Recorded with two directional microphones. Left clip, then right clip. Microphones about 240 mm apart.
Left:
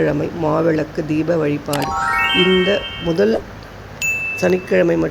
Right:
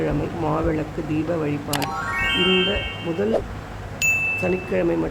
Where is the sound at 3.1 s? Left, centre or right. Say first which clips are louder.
Left 9 dB; centre.